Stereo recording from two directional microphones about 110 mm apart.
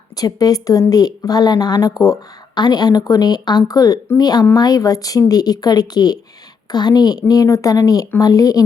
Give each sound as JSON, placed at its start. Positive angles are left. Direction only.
{"t": 0.2, "sound": "a woman's voice", "side_deg": 35}